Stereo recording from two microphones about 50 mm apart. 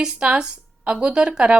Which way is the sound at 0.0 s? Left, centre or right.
Centre.